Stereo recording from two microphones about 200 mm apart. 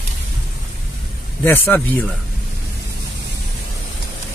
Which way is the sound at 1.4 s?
10° left (ahead or behind).